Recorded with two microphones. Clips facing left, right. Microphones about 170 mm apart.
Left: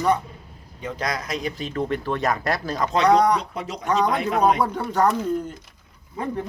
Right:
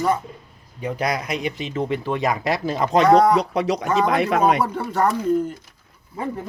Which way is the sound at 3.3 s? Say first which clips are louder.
Right 6 dB; 90° right.